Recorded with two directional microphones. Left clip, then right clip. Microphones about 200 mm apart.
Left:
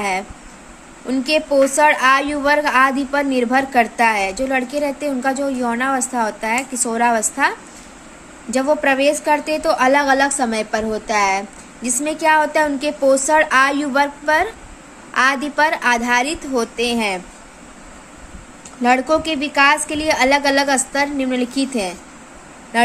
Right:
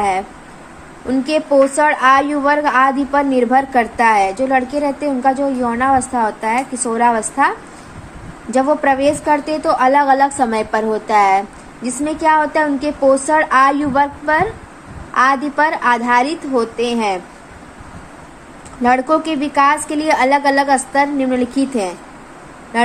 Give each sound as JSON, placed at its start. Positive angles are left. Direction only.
{"t": 1.0, "sound": "a woman's voice", "side_deg": 25}
{"t": 18.8, "sound": "a woman's voice", "side_deg": 25}